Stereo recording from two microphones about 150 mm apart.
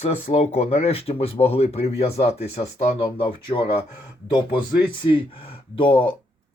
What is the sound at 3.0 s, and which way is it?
Speech, 35° left (ahead or behind).